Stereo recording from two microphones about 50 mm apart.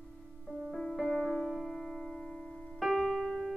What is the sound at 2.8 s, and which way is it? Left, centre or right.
Piano, centre.